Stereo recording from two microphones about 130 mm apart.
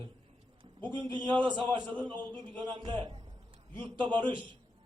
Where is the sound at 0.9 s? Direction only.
35° right (ahead or behind).